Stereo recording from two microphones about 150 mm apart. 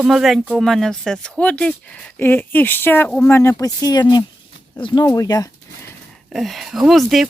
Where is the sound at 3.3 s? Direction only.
20° left (ahead or behind).